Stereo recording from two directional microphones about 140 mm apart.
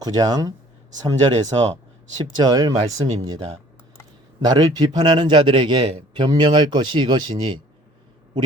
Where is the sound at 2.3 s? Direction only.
30° right (ahead or behind).